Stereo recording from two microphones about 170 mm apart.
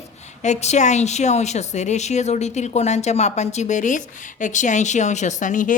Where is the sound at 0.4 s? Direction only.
40° left (ahead or behind).